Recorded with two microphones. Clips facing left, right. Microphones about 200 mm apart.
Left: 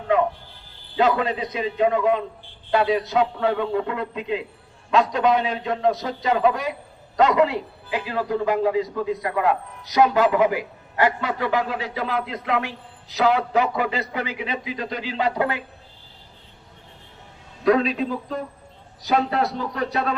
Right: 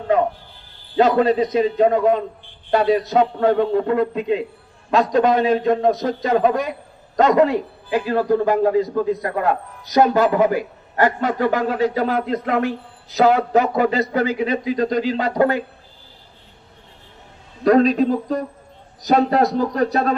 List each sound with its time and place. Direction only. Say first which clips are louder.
0.9 s a man's voice: right 6 dB; 40° right (ahead or behind)
17.6 s a man's voice: right 5 dB; 45° right (ahead or behind)